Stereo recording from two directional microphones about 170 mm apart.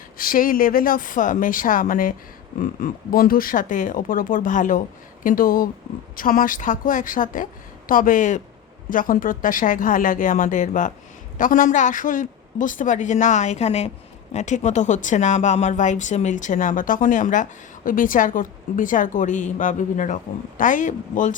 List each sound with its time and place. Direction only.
0.2 s speech: 55° left (ahead or behind)